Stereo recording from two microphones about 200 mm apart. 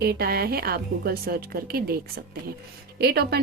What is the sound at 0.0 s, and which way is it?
A woman's voice, 50° right (ahead or behind).